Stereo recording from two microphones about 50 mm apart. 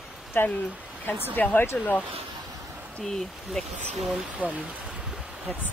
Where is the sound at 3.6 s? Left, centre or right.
Centre.